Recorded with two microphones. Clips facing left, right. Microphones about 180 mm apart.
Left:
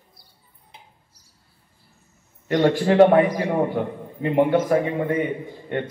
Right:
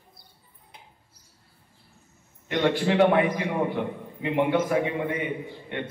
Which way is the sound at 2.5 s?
40° left (ahead or behind).